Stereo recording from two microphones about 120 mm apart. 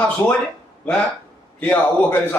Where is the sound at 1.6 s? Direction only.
15° left (ahead or behind).